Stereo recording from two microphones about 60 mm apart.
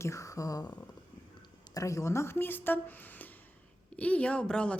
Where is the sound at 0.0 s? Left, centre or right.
Left.